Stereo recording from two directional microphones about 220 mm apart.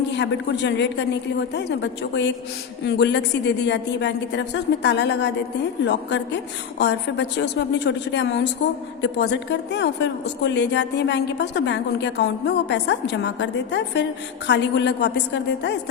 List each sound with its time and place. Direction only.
0.1 s a woman's voice: 50° left (ahead or behind)